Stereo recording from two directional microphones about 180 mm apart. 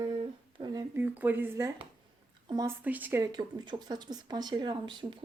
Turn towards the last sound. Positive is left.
turn(degrees=-25)  # may be behind; listen again after turning